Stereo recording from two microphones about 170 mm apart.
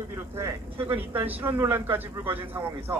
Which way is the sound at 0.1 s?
15° right (ahead or behind).